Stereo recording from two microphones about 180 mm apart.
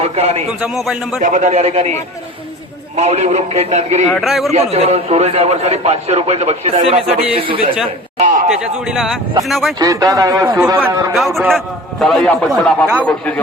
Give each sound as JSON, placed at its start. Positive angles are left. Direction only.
{"t": 0.0, "sound": "a man's voice", "side_deg": -35}
{"t": 0.6, "sound": "a man's voice", "side_deg": 0}
{"t": 1.2, "sound": "a man's voice", "side_deg": -40}
{"t": 4.1, "sound": "a man's voice", "side_deg": 0}
{"t": 4.5, "sound": "a man's voice", "side_deg": -35}
{"t": 8.4, "sound": "a man's voice", "side_deg": 0}
{"t": 9.7, "sound": "speech", "side_deg": -20}
{"t": 11.1, "sound": "a man's voice", "side_deg": 0}